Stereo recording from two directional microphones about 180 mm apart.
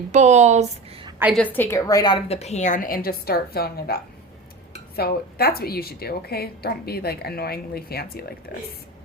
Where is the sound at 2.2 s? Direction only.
35° left (ahead or behind).